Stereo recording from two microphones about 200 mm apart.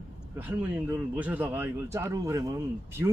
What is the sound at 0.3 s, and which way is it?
Speech, 10° right (ahead or behind).